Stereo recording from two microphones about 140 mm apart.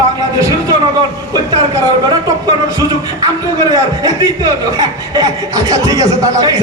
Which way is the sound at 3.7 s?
25° right (ahead or behind).